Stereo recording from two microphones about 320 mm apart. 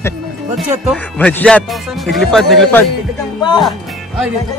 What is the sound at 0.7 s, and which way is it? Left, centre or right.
Speech, centre.